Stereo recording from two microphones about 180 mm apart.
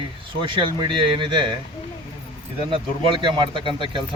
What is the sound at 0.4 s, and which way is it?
Speech, 25° right (ahead or behind).